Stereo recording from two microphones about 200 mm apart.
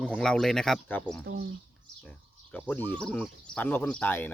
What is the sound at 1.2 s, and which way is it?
Speech, 55° right (ahead or behind).